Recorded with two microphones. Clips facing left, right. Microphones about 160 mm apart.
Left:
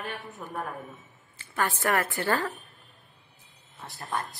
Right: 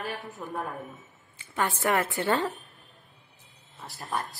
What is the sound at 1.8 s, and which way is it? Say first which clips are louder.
Speech: right 2 dB; 20° right (ahead or behind).